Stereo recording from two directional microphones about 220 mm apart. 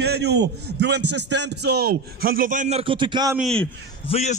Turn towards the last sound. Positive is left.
turn(degrees=30)  # may be behind; listen again after turning